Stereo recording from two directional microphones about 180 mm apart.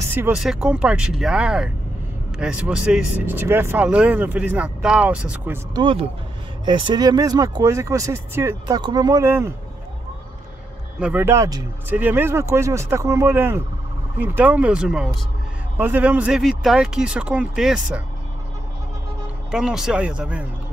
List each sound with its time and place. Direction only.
0.1 s speech: 10° right (ahead or behind)
5.8 s speech: 30° right (ahead or behind)
11.0 s speech: 10° right (ahead or behind)
19.5 s speech: 5° right (ahead or behind)